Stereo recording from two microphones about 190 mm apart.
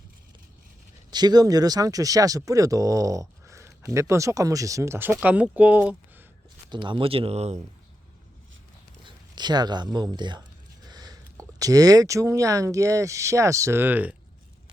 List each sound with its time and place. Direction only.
1.1 s speech: 20° right (ahead or behind)
6.7 s speech: 25° right (ahead or behind)
9.0 s speech: 20° right (ahead or behind)